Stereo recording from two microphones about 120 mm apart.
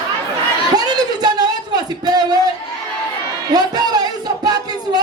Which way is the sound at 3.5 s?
35° right (ahead or behind).